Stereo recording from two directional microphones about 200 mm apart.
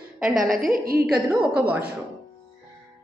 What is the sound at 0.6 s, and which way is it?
Speech, 45° right (ahead or behind).